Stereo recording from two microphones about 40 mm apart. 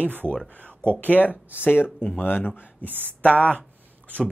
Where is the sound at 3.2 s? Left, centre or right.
Left.